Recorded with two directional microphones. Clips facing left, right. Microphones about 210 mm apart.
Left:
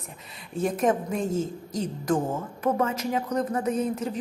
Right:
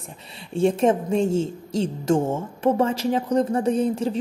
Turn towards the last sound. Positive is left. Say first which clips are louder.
# right 5 dB
turn(degrees=-30)  # may be behind; listen again after turning